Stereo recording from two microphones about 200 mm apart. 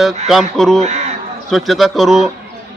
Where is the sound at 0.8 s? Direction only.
35° right (ahead or behind).